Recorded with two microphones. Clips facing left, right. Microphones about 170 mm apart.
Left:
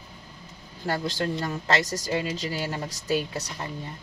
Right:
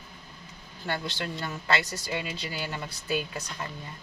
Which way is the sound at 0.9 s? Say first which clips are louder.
Left 5 dB; 40° left (ahead or behind).